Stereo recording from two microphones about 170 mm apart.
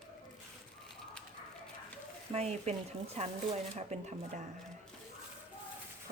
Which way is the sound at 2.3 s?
40° right (ahead or behind).